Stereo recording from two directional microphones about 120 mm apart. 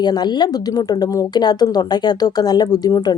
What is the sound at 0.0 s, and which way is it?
A woman's voice, 35° left (ahead or behind).